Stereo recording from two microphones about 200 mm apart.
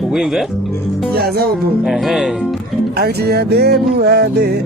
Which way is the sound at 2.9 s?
50° right (ahead or behind).